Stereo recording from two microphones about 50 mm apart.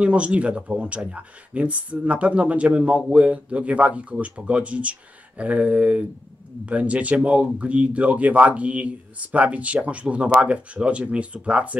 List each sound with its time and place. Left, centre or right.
0.0 s speech: right